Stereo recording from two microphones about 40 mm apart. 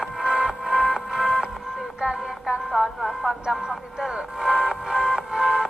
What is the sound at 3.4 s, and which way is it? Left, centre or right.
Music, centre.